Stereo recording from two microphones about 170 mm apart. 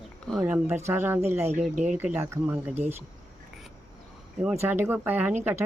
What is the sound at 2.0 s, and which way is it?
Speech, 10° right (ahead or behind).